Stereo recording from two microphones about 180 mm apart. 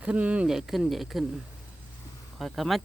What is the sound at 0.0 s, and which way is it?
Speech, 5° right (ahead or behind).